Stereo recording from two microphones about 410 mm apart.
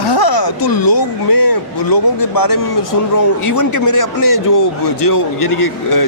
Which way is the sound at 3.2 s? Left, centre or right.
Left.